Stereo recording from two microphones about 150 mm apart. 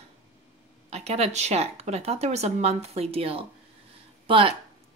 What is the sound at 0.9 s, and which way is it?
Speech, 45° right (ahead or behind).